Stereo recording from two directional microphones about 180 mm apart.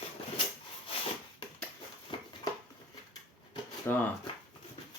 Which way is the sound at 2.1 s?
25° left (ahead or behind).